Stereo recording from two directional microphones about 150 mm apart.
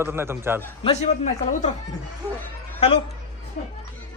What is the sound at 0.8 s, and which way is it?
Speech, 45° left (ahead or behind).